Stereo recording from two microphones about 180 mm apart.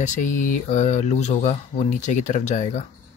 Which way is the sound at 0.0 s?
45° left (ahead or behind).